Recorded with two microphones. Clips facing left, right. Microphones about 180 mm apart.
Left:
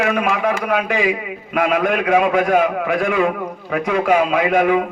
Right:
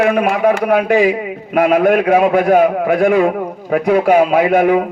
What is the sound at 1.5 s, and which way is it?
A man's voice, 35° right (ahead or behind).